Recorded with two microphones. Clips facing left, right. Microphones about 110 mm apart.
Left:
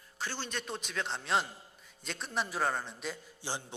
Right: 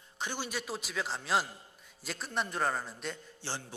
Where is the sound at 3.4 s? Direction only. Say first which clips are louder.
Left 1 dB; 15° left (ahead or behind).